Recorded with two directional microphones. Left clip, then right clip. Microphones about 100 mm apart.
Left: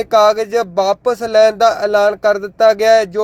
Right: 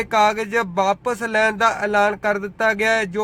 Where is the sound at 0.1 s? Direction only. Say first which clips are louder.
Left 7 dB; 30° left (ahead or behind).